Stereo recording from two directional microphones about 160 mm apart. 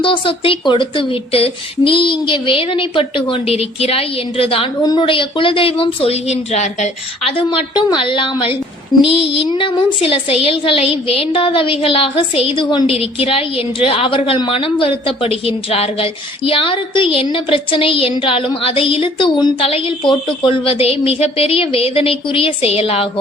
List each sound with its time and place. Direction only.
0.0 s speech: 30° left (ahead or behind)
8.9 s child singing: 25° left (ahead or behind)
9.5 s speech: 30° left (ahead or behind)